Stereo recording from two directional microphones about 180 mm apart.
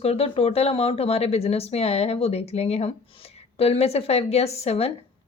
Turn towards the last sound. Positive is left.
turn(degrees=35)  # may be behind; listen again after turning